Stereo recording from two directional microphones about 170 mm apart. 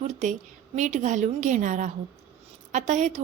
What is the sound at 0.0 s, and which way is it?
A woman's voice, 45° right (ahead or behind).